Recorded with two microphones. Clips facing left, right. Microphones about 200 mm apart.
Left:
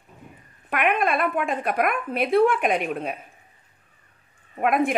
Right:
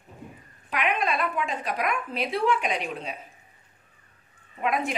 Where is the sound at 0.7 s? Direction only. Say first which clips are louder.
Left 4 dB; 55° left (ahead or behind).